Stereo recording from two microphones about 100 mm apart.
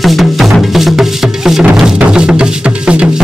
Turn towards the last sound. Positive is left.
turn(degrees=-10)  # may be behind; listen again after turning